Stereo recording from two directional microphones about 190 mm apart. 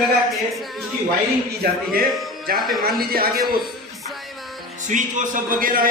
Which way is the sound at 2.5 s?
50° right (ahead or behind).